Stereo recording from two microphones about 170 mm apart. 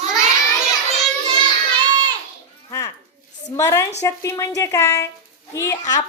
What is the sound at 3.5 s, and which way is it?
A woman's voice, 15° left (ahead or behind).